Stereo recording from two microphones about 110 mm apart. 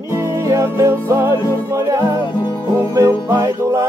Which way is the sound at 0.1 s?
25° right (ahead or behind).